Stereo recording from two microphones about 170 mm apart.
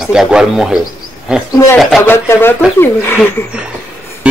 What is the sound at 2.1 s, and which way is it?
Speech, 15° left (ahead or behind).